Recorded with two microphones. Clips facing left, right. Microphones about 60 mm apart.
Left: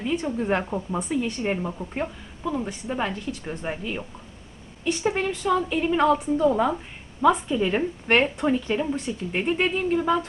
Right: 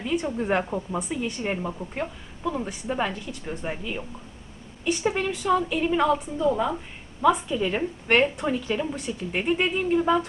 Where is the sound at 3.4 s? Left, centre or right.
Centre.